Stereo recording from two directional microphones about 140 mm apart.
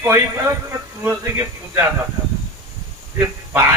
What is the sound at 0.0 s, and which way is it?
A man's voice, 15° right (ahead or behind).